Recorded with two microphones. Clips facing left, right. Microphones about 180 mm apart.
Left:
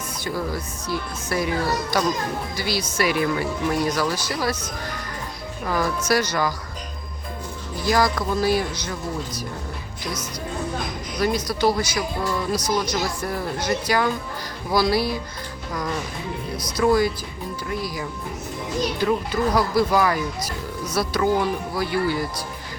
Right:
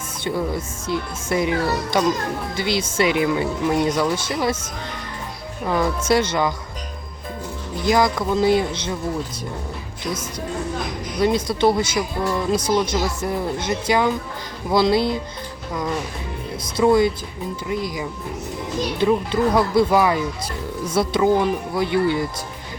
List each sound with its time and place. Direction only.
0.3 s speech: 25° right (ahead or behind)
5.6 s speech: 20° right (ahead or behind)
7.9 s speech: 20° right (ahead or behind)
11.2 s speech: 25° right (ahead or behind)
16.7 s speech: 20° right (ahead or behind)